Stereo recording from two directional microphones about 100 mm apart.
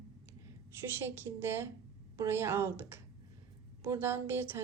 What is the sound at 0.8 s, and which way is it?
A woman's voice, 25° right (ahead or behind).